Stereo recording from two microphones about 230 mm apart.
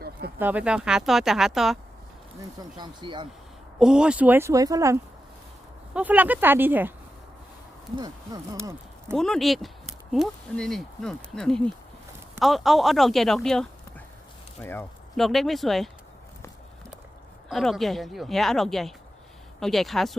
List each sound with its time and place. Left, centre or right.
0.3 s speech: centre
2.7 s speech: centre
3.8 s speech: centre
7.9 s speech: centre
9.1 s speech: centre
17.5 s speech: centre